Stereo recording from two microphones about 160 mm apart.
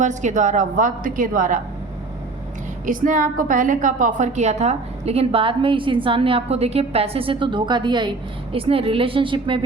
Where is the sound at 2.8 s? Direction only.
55° right (ahead or behind).